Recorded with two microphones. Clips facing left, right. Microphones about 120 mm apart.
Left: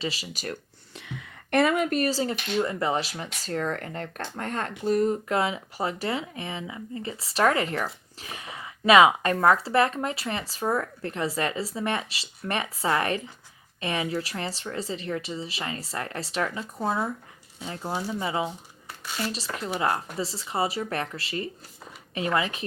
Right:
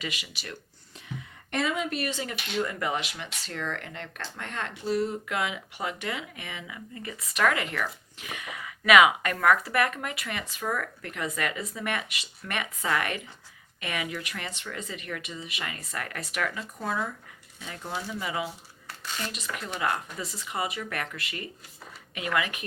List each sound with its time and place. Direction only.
0.0 s speech: 35° left (ahead or behind)
0.9 s speech: 75° left (ahead or behind); by 22.6 s 30° left (ahead or behind)